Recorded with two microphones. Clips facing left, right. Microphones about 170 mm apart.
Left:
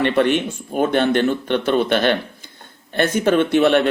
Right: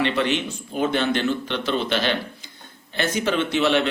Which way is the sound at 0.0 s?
55° left (ahead or behind).